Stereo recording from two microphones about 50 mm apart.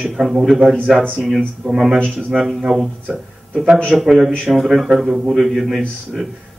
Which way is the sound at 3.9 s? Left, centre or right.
Right.